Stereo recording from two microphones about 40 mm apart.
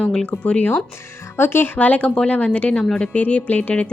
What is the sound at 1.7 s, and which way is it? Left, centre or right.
A woman's voice, left.